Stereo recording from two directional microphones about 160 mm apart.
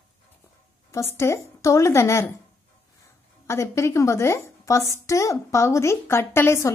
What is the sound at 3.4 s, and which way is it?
A woman's voice, 15° left (ahead or behind).